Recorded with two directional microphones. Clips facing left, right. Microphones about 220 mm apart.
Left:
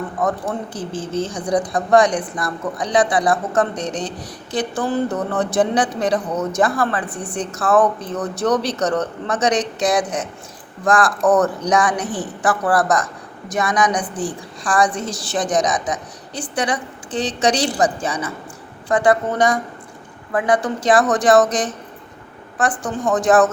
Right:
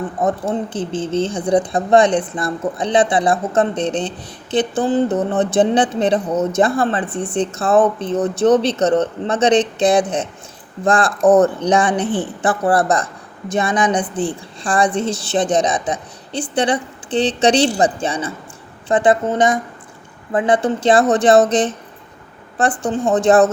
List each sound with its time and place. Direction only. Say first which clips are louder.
0.2 s speech: right 3 dB; 25° right (ahead or behind)
22.9 s speech: right 3 dB; 25° right (ahead or behind)